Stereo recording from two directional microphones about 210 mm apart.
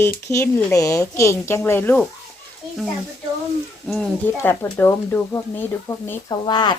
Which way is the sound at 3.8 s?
5° left (ahead or behind).